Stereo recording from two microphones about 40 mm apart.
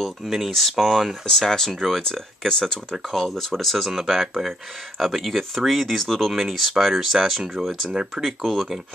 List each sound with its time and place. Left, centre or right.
0.0 s speech: centre
3.9 s speech: centre
4.5 s speech: centre
7.9 s speech: centre